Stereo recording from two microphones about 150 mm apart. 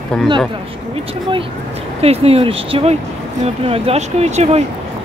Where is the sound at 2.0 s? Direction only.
40° right (ahead or behind).